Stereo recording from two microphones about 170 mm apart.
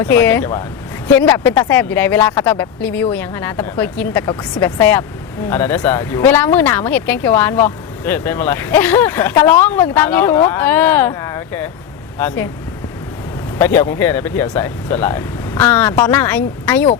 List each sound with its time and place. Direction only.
0.0 s speech: 10° left (ahead or behind)
13.6 s speech: 15° left (ahead or behind)